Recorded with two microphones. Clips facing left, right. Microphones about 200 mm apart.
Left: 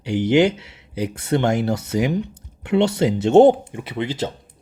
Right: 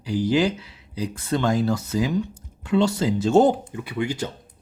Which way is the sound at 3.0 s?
65° left (ahead or behind).